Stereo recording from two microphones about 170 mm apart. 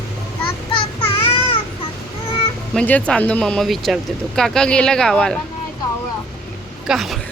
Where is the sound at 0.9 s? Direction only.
35° left (ahead or behind).